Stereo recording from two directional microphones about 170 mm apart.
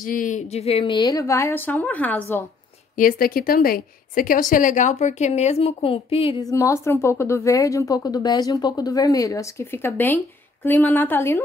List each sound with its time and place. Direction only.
0.0 s a woman's voice: 50° left (ahead or behind); by 2.4 s 10° left (ahead or behind)
3.0 s a woman's voice: 60° left (ahead or behind); by 6.4 s 35° left (ahead or behind)
6.4 s speech: 20° left (ahead or behind)